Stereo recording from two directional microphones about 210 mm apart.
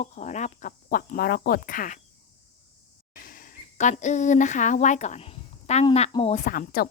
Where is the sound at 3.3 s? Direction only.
40° left (ahead or behind).